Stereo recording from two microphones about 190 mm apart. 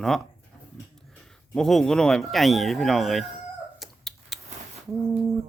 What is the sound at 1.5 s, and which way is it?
Speech, centre (ahead or behind).